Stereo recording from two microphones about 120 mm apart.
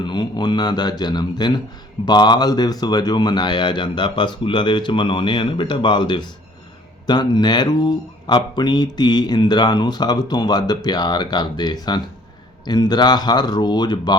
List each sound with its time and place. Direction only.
0.0 s speech: 40° left (ahead or behind)